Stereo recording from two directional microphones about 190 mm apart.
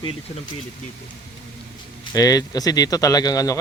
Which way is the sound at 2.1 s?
20° left (ahead or behind).